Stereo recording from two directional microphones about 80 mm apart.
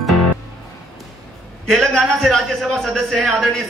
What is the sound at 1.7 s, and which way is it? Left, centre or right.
A man's voice, centre.